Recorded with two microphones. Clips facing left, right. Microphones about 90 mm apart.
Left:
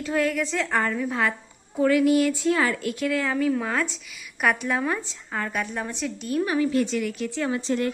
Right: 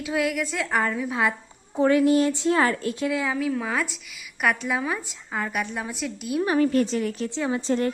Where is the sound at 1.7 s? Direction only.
30° right (ahead or behind).